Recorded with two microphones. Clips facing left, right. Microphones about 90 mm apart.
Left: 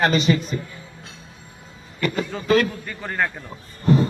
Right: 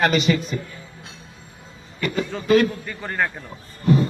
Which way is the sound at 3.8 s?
35° left (ahead or behind).